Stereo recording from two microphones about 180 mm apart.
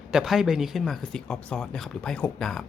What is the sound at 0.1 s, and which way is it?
Speech, 5° right (ahead or behind).